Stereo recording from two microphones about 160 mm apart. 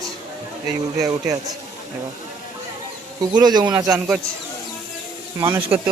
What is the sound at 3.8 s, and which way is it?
Speech, 5° right (ahead or behind).